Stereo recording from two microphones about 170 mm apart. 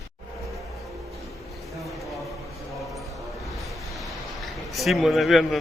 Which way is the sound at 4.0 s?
Centre (ahead or behind).